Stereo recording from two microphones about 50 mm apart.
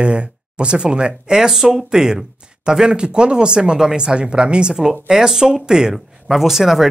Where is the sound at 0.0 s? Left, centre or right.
Right.